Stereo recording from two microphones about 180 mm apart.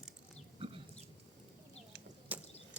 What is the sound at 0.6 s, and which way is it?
Livestock, 30° right (ahead or behind).